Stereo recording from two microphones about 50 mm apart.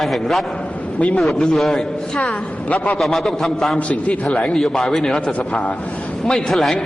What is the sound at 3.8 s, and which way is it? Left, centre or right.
Speech, left.